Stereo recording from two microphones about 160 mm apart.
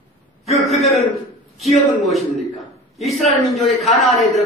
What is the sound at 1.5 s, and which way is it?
A man's voice, centre (ahead or behind).